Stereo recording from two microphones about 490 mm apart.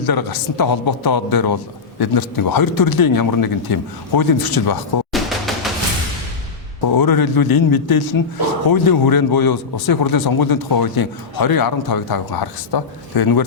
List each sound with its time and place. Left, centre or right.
0.0 s speech: left
5.1 s music: centre
7.0 s speech: left